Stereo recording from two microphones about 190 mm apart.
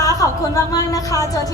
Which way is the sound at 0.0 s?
20° left (ahead or behind).